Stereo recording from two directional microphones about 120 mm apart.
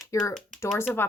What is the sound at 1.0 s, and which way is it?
Speech, 20° left (ahead or behind).